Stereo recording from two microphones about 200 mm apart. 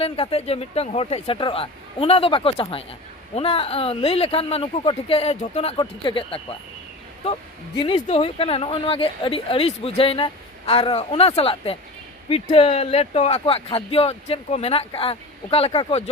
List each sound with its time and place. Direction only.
0.0 s speech: 30° left (ahead or behind)
7.8 s speech: 25° left (ahead or behind)